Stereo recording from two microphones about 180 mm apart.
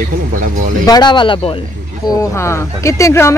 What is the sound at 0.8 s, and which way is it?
Speech, 25° left (ahead or behind).